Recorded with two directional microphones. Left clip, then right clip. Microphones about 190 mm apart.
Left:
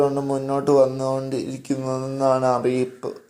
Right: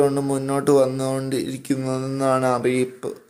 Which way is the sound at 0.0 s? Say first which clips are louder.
Right 1 dB; 20° right (ahead or behind).